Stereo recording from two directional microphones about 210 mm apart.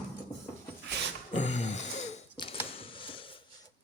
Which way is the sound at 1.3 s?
35° left (ahead or behind).